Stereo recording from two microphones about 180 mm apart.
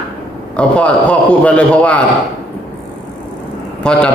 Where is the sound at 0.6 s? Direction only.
5° left (ahead or behind).